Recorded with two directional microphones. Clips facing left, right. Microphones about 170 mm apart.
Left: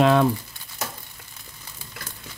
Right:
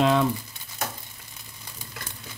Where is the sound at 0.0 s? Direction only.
55° left (ahead or behind).